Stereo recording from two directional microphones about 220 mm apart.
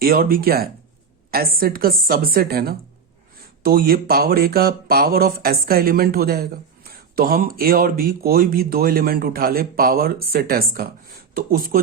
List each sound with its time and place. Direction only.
0.0 s speech: 40° right (ahead or behind)